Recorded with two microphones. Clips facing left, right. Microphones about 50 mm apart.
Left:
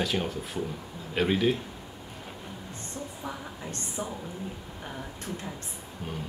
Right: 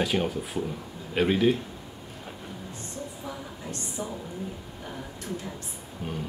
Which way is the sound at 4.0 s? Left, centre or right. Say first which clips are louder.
Even; left.